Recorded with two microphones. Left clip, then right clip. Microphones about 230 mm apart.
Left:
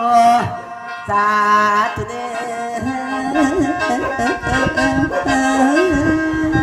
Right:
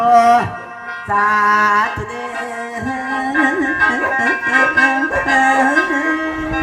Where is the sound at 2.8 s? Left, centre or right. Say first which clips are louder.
Right 1 dB; left.